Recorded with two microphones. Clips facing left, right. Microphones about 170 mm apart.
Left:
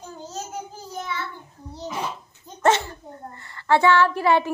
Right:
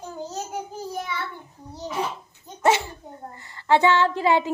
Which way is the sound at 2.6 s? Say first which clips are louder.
Left 1 dB; 10° right (ahead or behind).